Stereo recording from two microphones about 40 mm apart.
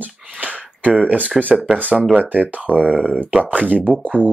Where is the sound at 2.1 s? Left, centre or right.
Right.